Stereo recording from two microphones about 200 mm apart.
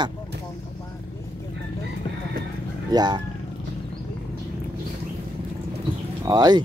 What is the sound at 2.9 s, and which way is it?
Speech, 20° right (ahead or behind).